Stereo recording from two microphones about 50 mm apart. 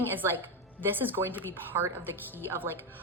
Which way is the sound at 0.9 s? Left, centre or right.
Right.